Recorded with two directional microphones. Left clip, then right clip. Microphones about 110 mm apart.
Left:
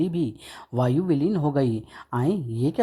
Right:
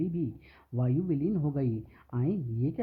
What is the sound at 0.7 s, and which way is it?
Speech, 35° left (ahead or behind).